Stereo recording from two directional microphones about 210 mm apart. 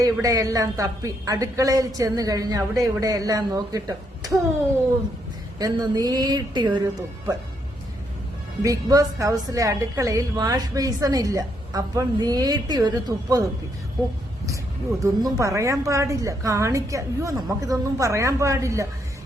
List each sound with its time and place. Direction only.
0.0 s a woman's voice: 15° right (ahead or behind)
5.5 s speech: 20° right (ahead or behind)
8.6 s a woman's voice: 15° right (ahead or behind)
15.0 s a woman's voice: 15° right (ahead or behind)